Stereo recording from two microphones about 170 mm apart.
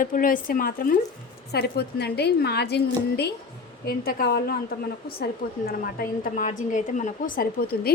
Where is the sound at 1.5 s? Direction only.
70° left (ahead or behind).